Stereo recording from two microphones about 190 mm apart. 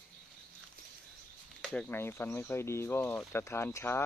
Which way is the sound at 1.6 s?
5° left (ahead or behind).